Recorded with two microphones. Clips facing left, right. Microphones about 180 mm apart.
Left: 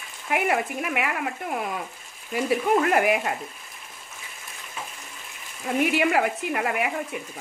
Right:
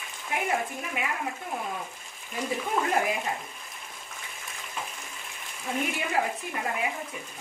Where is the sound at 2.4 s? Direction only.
75° left (ahead or behind).